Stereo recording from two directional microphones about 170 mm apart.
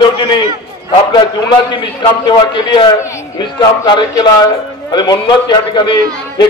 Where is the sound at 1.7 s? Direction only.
25° left (ahead or behind).